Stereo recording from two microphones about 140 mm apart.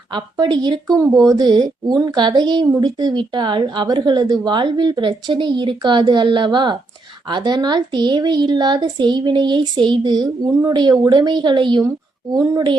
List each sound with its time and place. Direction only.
0.1 s a woman's voice: 30° right (ahead or behind)
0.9 s a woman's voice: 20° right (ahead or behind)